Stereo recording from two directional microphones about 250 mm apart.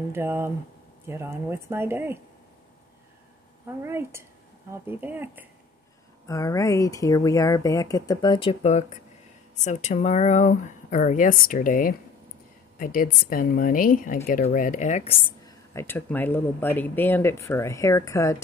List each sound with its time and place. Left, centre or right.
0.1 s speech: centre
3.8 s speech: centre
6.2 s speech: centre
15.4 s speech: centre